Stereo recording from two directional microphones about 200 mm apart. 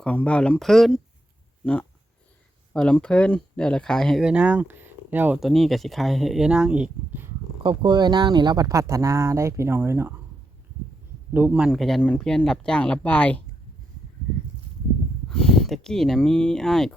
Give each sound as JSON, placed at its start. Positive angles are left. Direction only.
{"t": 0.0, "sound": "speech", "side_deg": 5}
{"t": 7.6, "sound": "speech", "side_deg": -25}
{"t": 11.3, "sound": "speech", "side_deg": -5}
{"t": 15.3, "sound": "speech", "side_deg": 5}